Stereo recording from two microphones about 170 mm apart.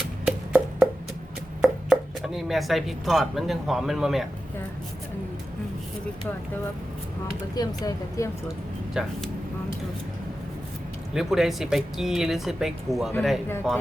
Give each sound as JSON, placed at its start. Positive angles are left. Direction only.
{"t": 0.3, "sound": "music", "side_deg": -5}
{"t": 1.6, "sound": "speech", "side_deg": -5}
{"t": 7.5, "sound": "speech", "side_deg": 20}
{"t": 9.0, "sound": "speech", "side_deg": -5}
{"t": 11.1, "sound": "speech", "side_deg": 0}